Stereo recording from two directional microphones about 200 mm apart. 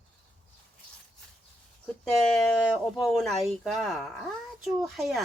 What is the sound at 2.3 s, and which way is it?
Speech, centre (ahead or behind).